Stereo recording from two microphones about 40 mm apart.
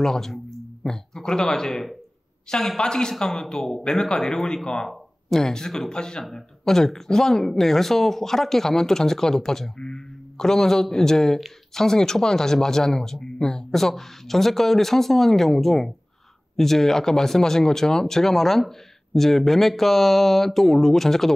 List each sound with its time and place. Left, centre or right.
0.0 s a woman's voice: centre
2.8 s speech: centre